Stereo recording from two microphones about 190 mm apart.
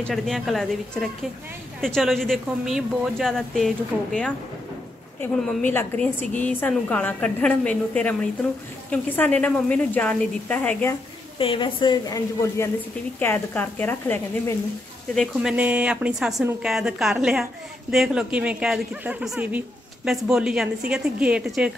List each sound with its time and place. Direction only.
0.0 s a woman's voice: centre (ahead or behind)
11.3 s a woman's voice: 25° left (ahead or behind); by 14.5 s 10° left (ahead or behind)
15.1 s speech: 5° right (ahead or behind)